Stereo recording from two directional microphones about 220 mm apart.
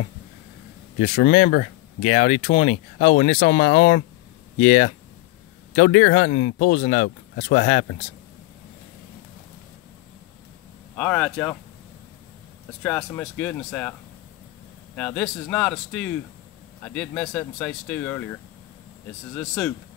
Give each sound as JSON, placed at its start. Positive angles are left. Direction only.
{"t": 1.1, "sound": "speech", "side_deg": 35}
{"t": 11.0, "sound": "speech", "side_deg": 5}
{"t": 12.8, "sound": "speech", "side_deg": 5}
{"t": 15.0, "sound": "a man's voice", "side_deg": 5}